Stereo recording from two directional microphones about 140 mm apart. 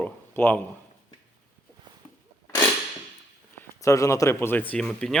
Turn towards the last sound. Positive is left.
turn(degrees=5)  # may be behind; listen again after turning